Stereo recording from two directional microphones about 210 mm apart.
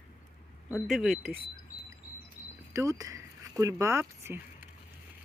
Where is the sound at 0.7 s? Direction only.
Centre (ahead or behind).